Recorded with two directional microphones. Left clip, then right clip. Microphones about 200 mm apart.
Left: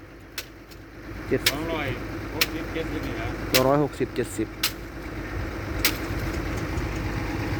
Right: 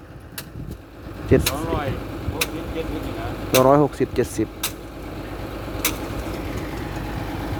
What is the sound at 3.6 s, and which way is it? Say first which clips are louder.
Speech: right 7 dB; 15° right (ahead or behind).